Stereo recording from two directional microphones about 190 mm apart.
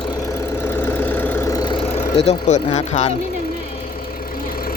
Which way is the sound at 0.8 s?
10° left (ahead or behind).